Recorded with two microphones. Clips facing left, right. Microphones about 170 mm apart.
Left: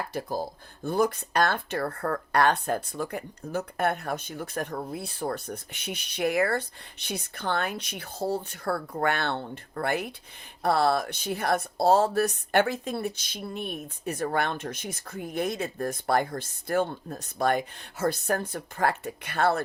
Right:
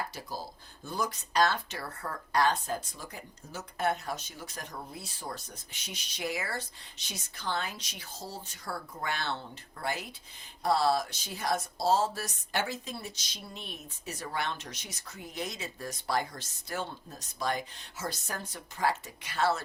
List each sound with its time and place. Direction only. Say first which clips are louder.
0.1 s speech: left 10 dB; 55° left (ahead or behind)